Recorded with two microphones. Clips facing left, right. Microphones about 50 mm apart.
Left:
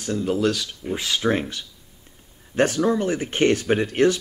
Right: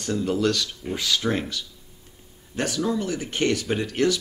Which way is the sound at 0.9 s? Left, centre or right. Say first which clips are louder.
Left 2 dB; left.